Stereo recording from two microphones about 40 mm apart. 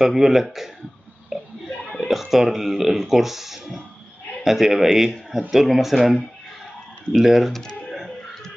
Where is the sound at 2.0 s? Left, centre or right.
Centre.